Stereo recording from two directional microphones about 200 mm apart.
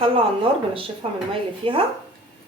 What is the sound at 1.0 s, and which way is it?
Speech, 30° right (ahead or behind).